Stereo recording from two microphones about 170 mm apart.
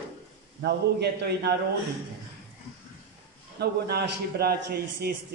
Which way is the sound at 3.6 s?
70° right (ahead or behind).